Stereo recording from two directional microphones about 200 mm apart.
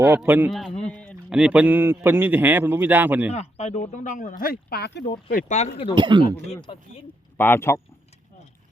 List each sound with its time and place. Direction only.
0.0 s a man's voice: 10° right (ahead or behind)
3.3 s speech: 30° left (ahead or behind)
5.9 s speech: 20° right (ahead or behind)
6.5 s speech: 25° left (ahead or behind)
7.3 s speech: 10° left (ahead or behind)